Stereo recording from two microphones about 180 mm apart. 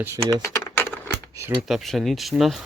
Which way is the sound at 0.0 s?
20° right (ahead or behind).